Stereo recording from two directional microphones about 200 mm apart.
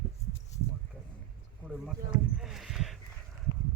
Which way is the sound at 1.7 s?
Centre (ahead or behind).